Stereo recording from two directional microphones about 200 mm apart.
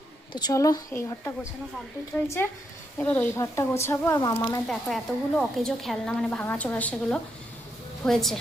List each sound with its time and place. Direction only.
0.3 s speech: 20° left (ahead or behind)
4.9 s a woman's voice: centre (ahead or behind)